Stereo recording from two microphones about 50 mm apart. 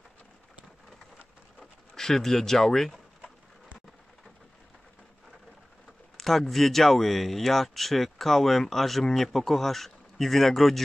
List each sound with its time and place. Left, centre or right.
1.6 s speech: centre
6.1 s speech: centre